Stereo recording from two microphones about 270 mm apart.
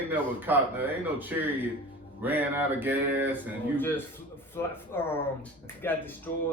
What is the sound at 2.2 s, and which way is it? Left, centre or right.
A man's voice, centre.